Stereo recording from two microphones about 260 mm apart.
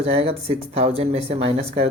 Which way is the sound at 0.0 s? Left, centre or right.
Right.